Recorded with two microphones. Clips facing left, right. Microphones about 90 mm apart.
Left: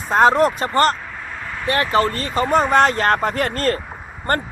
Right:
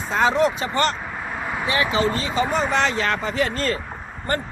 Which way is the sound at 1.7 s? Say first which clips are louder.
Left 4 dB; 55° left (ahead or behind).